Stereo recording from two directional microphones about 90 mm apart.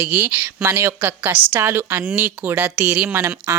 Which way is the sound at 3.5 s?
35° right (ahead or behind).